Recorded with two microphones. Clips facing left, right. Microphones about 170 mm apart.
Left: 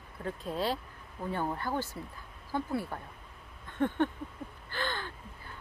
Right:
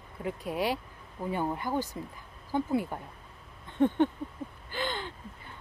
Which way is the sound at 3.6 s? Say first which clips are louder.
Right 4 dB; 20° right (ahead or behind).